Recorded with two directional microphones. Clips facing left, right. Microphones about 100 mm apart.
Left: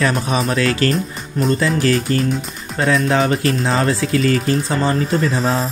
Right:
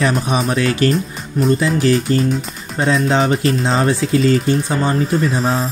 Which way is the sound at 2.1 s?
25° right (ahead or behind).